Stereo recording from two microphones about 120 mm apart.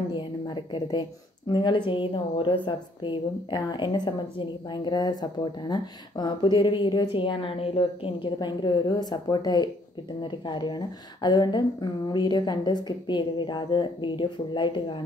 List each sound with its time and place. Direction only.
1.5 s a woman's voice: 40° left (ahead or behind)